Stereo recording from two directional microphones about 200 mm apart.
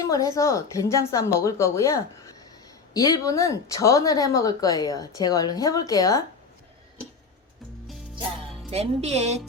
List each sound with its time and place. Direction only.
0.0 s speech: 15° left (ahead or behind)
8.7 s speech: 30° right (ahead or behind)